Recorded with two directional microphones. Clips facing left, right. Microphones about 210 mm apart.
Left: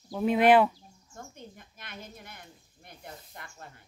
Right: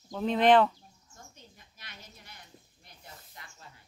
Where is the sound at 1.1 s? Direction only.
55° left (ahead or behind).